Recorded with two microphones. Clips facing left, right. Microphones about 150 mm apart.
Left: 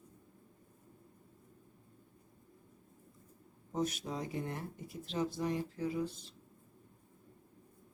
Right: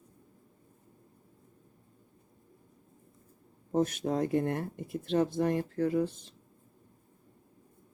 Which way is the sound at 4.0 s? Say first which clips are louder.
Right 11 dB; 50° right (ahead or behind).